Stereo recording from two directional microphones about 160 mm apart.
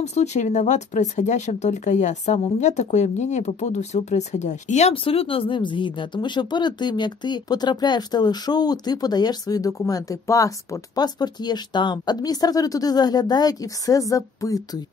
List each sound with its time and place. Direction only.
0.0 s speech: 45° left (ahead or behind); by 14.8 s 20° left (ahead or behind)